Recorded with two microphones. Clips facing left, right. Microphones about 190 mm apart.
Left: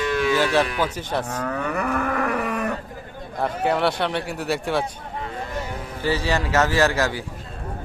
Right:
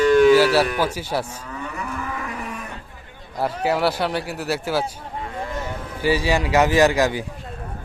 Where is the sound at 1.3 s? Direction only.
70° left (ahead or behind).